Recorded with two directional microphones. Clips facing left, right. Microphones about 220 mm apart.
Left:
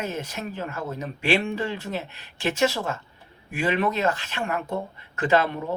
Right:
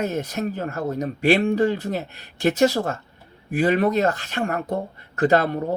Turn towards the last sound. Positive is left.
turn(degrees=-40)  # may be behind; listen again after turning